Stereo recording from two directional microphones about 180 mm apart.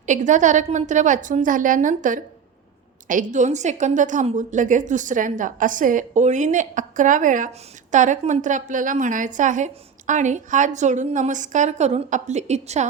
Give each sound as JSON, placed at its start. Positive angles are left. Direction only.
{"t": 0.0, "sound": "a woman's voice", "side_deg": -45}